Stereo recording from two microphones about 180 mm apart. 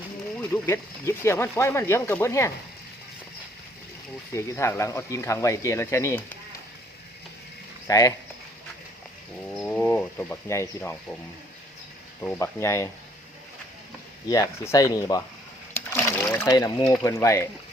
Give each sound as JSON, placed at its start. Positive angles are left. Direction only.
{"t": 0.3, "sound": "speech", "side_deg": 10}
{"t": 4.4, "sound": "speech", "side_deg": 15}
{"t": 7.9, "sound": "speech", "side_deg": 20}
{"t": 9.5, "sound": "speech", "side_deg": 10}
{"t": 12.2, "sound": "speech", "side_deg": 15}
{"t": 14.3, "sound": "speech", "side_deg": 20}
{"t": 15.7, "sound": "splash", "side_deg": 15}
{"t": 16.5, "sound": "speech", "side_deg": 20}